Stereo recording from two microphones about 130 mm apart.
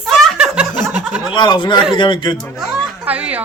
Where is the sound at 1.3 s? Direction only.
35° left (ahead or behind).